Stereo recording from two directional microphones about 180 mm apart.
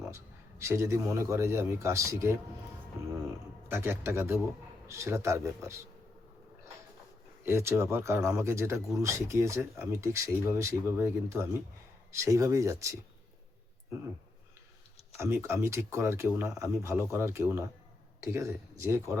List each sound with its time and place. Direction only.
0.6 s speech: 15° right (ahead or behind)
7.4 s speech: 15° right (ahead or behind)
15.2 s speech: 15° right (ahead or behind)